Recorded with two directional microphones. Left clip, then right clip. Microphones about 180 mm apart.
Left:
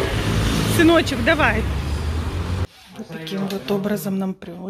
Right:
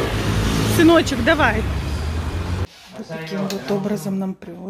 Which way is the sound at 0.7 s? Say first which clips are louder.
Right 2 dB; 15° right (ahead or behind).